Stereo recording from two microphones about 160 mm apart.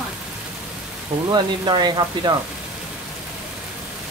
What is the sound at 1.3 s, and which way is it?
Speech, 25° right (ahead or behind).